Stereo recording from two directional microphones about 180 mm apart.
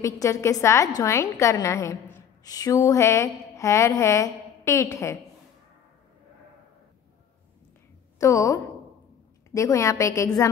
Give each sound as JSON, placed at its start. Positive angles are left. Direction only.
{"t": 0.0, "sound": "a woman's voice", "side_deg": 15}
{"t": 8.2, "sound": "a woman's voice", "side_deg": 20}